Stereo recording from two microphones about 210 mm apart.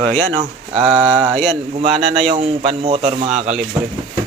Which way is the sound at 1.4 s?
30° right (ahead or behind).